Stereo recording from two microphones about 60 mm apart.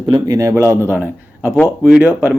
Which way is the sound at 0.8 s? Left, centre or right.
Right.